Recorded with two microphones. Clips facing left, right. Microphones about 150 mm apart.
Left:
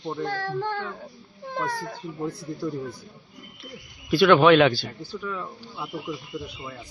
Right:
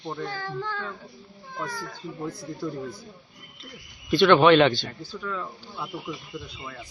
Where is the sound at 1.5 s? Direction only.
75° left (ahead or behind).